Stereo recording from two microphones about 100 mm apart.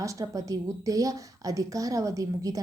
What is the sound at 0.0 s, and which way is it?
A woman's voice, 35° right (ahead or behind).